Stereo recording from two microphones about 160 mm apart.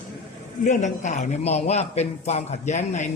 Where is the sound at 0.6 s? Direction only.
50° left (ahead or behind).